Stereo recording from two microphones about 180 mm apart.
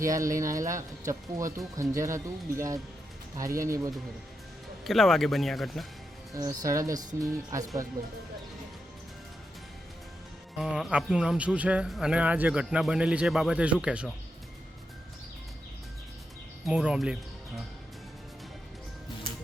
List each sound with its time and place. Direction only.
0.0 s speech: 15° right (ahead or behind)
4.8 s speech: centre (ahead or behind)
6.3 s speech: 20° right (ahead or behind)
10.6 s speech: 5° right (ahead or behind)
16.6 s speech: 5° right (ahead or behind)